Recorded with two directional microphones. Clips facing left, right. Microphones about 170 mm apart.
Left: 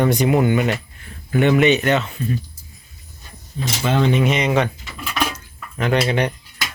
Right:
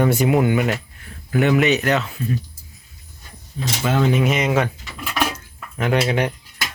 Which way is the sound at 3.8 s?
5° right (ahead or behind).